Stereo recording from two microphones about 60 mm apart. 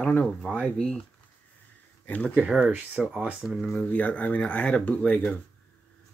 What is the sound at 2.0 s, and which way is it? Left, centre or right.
Speech, left.